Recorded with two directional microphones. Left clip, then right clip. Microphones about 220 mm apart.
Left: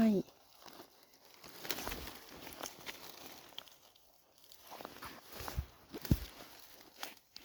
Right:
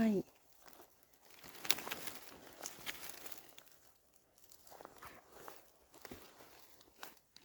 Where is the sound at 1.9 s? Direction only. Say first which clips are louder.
Left 1 dB; 50° left (ahead or behind).